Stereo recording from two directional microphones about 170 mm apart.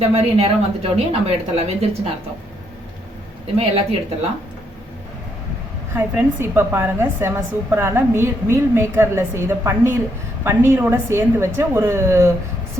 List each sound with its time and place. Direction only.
0.0 s speech: 35° right (ahead or behind)
3.6 s speech: 35° right (ahead or behind)
5.9 s a woman's voice: 15° right (ahead or behind)